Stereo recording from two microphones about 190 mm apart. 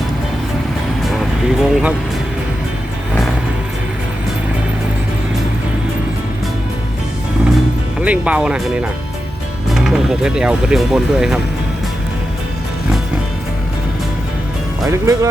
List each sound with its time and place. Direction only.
1.2 s speech: centre (ahead or behind)
8.0 s speech: 5° right (ahead or behind)
14.8 s speech: 15° right (ahead or behind)